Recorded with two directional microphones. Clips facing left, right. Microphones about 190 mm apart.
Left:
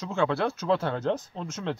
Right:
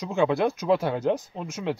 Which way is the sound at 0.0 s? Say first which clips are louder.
Right 3 dB; 15° right (ahead or behind).